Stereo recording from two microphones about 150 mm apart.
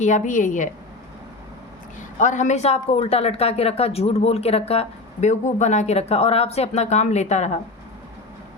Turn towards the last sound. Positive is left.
turn(degrees=50)  # may be behind; listen again after turning